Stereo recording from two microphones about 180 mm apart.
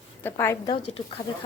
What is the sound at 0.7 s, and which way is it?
Speech, 30° left (ahead or behind).